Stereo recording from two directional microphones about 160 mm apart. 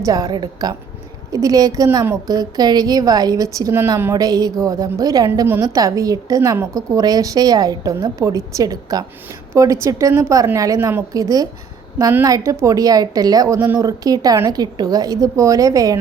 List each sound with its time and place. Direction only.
0.0 s a woman's voice: 25° right (ahead or behind)